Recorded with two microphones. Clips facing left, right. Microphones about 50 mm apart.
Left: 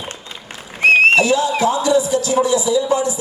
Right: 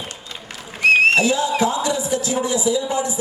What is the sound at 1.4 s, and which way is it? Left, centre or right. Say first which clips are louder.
Speech: left 3 dB; left.